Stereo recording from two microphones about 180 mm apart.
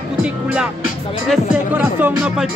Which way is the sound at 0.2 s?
5° right (ahead or behind).